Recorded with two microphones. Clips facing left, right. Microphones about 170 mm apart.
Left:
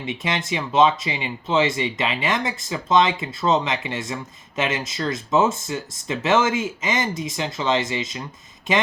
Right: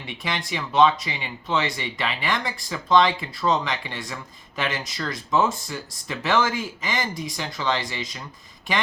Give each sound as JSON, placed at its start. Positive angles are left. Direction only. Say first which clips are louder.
{"t": 0.0, "sound": "speech", "louder": "left 4 dB", "side_deg": 20}